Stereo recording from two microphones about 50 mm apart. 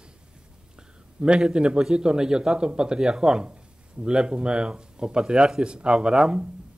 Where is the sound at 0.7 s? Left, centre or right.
Centre.